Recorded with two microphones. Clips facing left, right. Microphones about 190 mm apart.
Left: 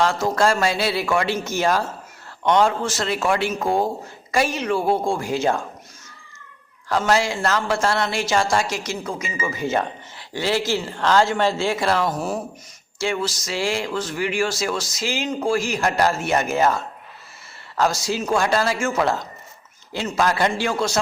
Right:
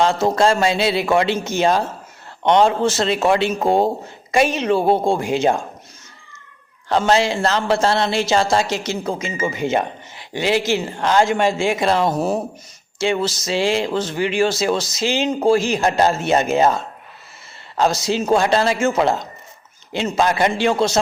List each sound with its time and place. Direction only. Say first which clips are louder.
0.0 s speech: right 3 dB; 20° right (ahead or behind)
6.8 s speech: right 3 dB; 25° right (ahead or behind)